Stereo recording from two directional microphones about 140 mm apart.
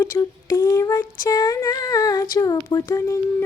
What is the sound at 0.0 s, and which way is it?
Female singing, 20° left (ahead or behind).